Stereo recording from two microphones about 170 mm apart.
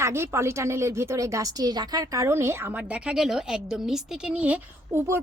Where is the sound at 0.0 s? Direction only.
15° right (ahead or behind).